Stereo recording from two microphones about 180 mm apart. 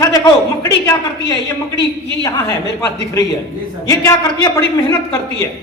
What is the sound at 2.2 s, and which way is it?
Speech, 15° left (ahead or behind).